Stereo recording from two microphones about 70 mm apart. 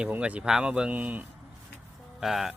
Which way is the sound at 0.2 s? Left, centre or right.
Centre.